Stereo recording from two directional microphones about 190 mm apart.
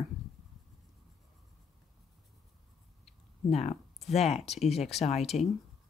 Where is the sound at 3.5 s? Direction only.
35° left (ahead or behind).